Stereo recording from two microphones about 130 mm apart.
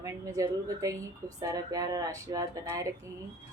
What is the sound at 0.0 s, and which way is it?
A woman's voice, 25° right (ahead or behind).